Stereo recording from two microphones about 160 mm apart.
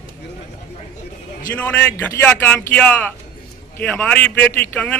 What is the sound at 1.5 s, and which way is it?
Speech, 10° left (ahead or behind).